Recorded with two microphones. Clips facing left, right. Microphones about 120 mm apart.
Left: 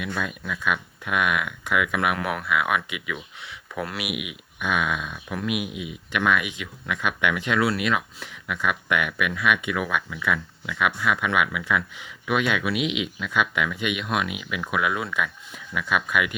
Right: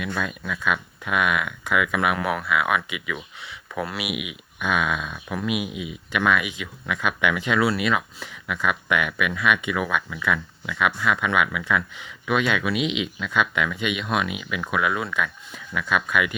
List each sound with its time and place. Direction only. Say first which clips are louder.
0.0 s speech: right 1 dB; 5° left (ahead or behind)
4.1 s speech: right 1 dB; 55° left (ahead or behind)
4.6 s speech: right 1 dB; centre (ahead or behind)